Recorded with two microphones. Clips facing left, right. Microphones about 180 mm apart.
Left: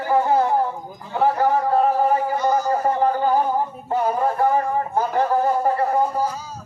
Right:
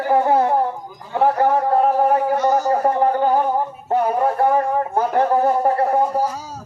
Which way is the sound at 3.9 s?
60° right (ahead or behind).